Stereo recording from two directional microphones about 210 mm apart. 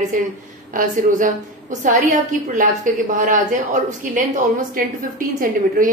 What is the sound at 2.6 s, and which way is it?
A woman's voice, 40° right (ahead or behind).